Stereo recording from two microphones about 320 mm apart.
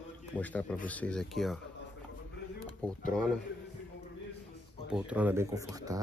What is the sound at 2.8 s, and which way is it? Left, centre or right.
Speech, centre.